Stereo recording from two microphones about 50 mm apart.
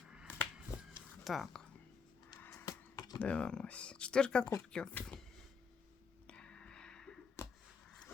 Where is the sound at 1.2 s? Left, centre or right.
Centre.